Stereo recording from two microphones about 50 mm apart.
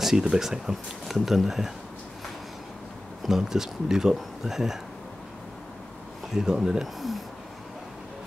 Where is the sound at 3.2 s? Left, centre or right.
Centre.